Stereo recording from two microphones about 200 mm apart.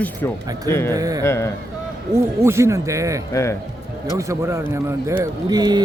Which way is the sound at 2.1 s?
15° right (ahead or behind).